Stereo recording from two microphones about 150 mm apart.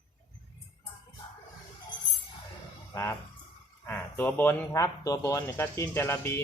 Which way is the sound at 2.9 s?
15° left (ahead or behind).